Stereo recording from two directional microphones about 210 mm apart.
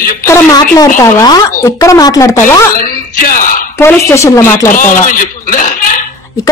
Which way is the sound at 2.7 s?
40° left (ahead or behind).